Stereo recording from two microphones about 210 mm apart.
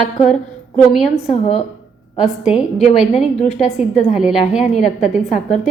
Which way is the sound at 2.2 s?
5° right (ahead or behind).